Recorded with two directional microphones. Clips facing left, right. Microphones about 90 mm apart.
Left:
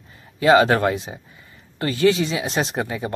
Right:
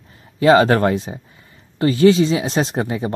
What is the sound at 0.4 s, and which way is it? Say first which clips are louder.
Speech: right 2 dB; 35° right (ahead or behind).